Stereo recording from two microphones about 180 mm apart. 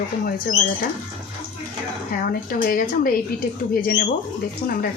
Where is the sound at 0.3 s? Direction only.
50° left (ahead or behind).